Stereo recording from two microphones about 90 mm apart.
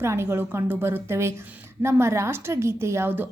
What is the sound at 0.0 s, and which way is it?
A woman's voice, 30° right (ahead or behind).